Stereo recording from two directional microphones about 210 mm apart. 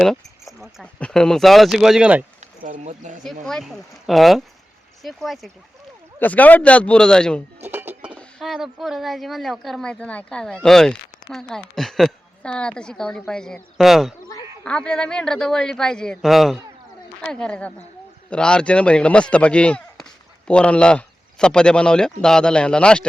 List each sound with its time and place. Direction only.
0.0 s speech: centre (ahead or behind)
2.6 s speech: 35° right (ahead or behind)
3.4 s a man's voice: centre (ahead or behind)
7.6 s speech: 10° right (ahead or behind)